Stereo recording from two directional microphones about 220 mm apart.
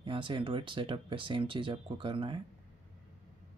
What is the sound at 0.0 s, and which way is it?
Speech, 25° right (ahead or behind).